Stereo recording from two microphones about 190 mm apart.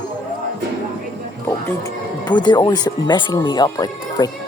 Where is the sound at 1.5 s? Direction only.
15° left (ahead or behind).